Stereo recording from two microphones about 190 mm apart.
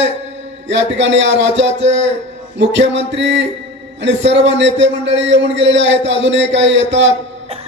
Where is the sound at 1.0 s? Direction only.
70° right (ahead or behind).